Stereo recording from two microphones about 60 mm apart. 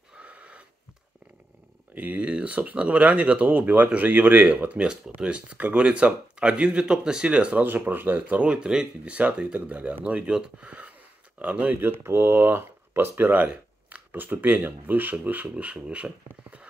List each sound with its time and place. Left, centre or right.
0.2 s wheeze: right
2.0 s speech: right
7.6 s speech: right
8.4 s speech: centre
11.8 s speech: right; by 16.1 s centre